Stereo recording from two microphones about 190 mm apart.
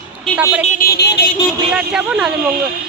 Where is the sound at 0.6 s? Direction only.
50° left (ahead or behind).